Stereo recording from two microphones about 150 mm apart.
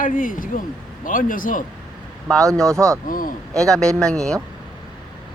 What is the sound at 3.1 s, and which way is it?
Speech, 70° left (ahead or behind).